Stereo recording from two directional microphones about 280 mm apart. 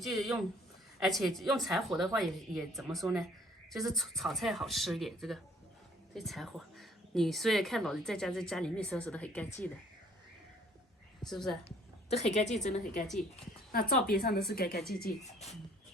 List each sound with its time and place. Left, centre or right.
0.0 s a woman's voice: centre
11.2 s a woman's voice: centre
12.1 s a woman's voice: left
15.0 s a woman's voice: left